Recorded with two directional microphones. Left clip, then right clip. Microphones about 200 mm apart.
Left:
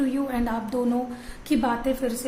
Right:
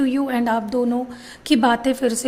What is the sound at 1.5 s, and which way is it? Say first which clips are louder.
Speech: right 7 dB; 40° right (ahead or behind).